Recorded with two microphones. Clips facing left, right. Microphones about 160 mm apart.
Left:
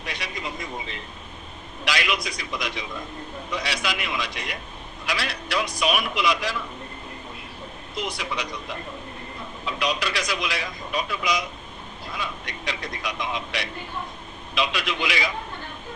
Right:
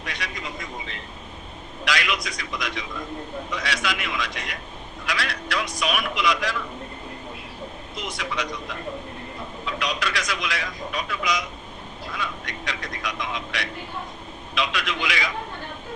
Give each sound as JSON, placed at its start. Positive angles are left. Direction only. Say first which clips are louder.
{"t": 0.0, "sound": "speech", "louder": "left 1 dB", "side_deg": 30}
{"t": 1.8, "sound": "speech", "louder": "even", "side_deg": 30}
{"t": 8.1, "sound": "a man's voice", "louder": "right 1 dB", "side_deg": 30}
{"t": 10.0, "sound": "speech", "louder": "left 1 dB", "side_deg": 30}